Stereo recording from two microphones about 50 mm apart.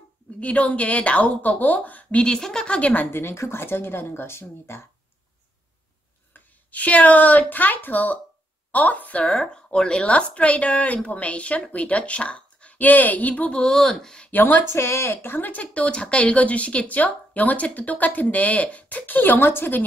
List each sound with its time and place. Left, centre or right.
0.4 s a woman's voice: left
2.2 s speech: centre
2.9 s speech: left
6.3 s a woman's voice: left
12.7 s a woman's voice: left
13.7 s speech: centre
14.3 s speech: left
14.7 s speech: left
15.6 s a woman's voice: left